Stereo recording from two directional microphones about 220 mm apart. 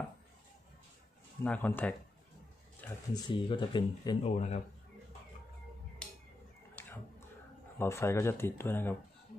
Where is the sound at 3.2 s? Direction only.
20° left (ahead or behind).